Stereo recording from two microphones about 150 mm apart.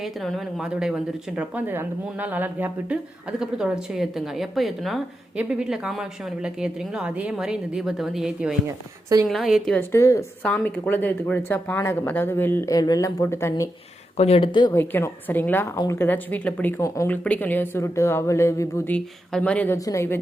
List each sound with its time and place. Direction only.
0.0 s speech: centre (ahead or behind)
9.7 s a woman's voice: 20° left (ahead or behind)
14.2 s speech: 40° left (ahead or behind)
14.7 s speech: 15° left (ahead or behind)
18.9 s speech: 5° left (ahead or behind)